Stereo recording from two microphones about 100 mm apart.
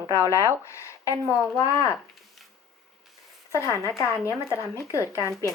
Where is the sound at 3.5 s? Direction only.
30° left (ahead or behind).